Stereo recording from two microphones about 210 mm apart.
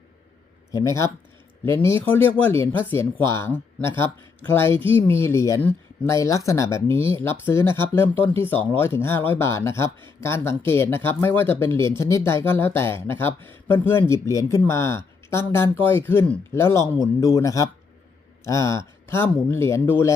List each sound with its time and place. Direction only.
0.7 s speech: 15° left (ahead or behind)
4.7 s speech: 25° right (ahead or behind)
5.2 s speech: 15° left (ahead or behind)